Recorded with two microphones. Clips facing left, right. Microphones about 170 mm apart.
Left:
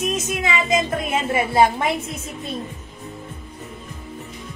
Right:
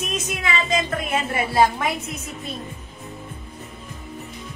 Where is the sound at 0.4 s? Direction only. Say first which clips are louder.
Left 2 dB; 20° left (ahead or behind).